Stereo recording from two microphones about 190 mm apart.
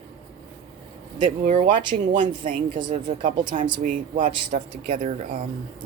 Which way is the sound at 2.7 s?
25° right (ahead or behind).